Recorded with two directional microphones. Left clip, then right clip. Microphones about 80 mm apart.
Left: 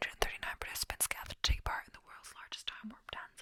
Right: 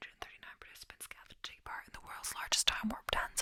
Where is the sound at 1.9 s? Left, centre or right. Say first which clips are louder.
Right 7 dB; centre.